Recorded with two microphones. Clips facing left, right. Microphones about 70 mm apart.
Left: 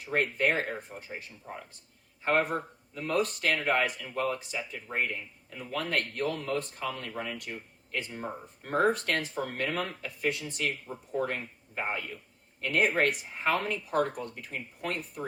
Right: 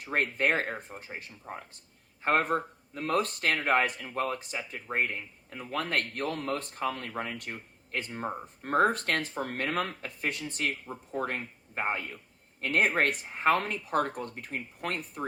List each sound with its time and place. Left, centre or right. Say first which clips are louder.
0.0 s speech: even; right
2.2 s speech: right 1 dB; right